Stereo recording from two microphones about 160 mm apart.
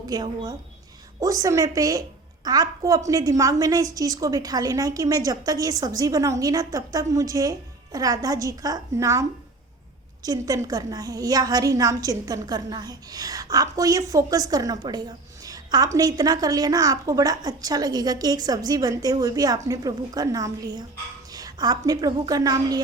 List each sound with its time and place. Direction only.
0.1 s a woman's voice: 25° right (ahead or behind)
10.2 s a woman's voice: 20° right (ahead or behind)
15.4 s a sound: 25° right (ahead or behind)
16.0 s a woman's voice: 25° right (ahead or behind)